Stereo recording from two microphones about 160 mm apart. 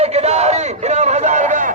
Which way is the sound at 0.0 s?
40° right (ahead or behind).